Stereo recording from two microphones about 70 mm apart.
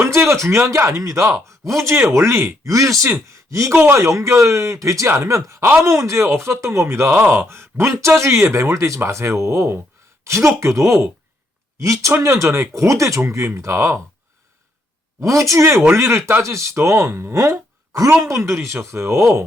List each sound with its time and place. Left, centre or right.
0.0 s speech: right
2.6 s speech: right
15.2 s speech: right